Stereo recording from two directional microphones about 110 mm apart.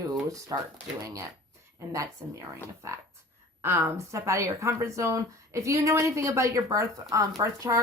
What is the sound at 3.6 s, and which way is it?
A woman's voice, 25° right (ahead or behind).